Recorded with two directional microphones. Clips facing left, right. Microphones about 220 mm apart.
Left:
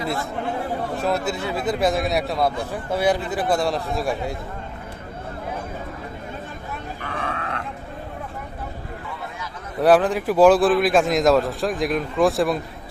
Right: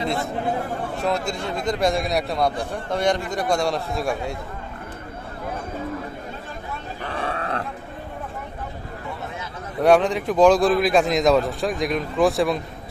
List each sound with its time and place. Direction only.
0.9 s a man's voice: centre (ahead or behind)
7.2 s grunt: 35° right (ahead or behind)
9.8 s a man's voice: centre (ahead or behind)